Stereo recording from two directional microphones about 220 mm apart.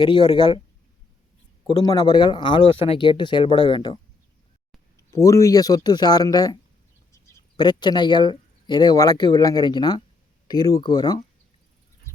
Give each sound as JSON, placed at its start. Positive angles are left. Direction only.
{"t": 0.0, "sound": "speech", "side_deg": 20}
{"t": 1.6, "sound": "speech", "side_deg": 20}
{"t": 4.9, "sound": "speech", "side_deg": 15}